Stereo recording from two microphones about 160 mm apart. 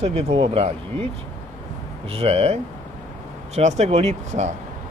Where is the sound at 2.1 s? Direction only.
40° right (ahead or behind).